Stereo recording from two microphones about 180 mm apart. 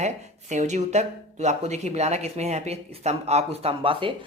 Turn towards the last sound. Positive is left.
turn(degrees=-30)  # may be behind; listen again after turning